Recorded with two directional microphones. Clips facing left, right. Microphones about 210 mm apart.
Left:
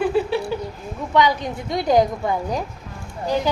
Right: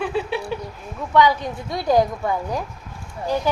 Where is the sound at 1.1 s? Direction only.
15° left (ahead or behind).